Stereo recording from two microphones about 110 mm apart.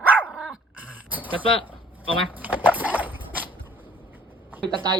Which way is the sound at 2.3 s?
15° right (ahead or behind).